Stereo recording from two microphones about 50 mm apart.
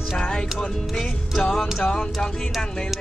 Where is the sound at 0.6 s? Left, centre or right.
Centre.